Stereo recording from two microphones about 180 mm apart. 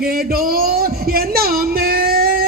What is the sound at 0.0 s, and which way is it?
Music, 55° right (ahead or behind).